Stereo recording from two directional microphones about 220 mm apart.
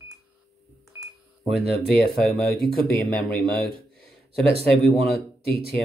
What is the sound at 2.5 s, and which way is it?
Speech, 25° right (ahead or behind).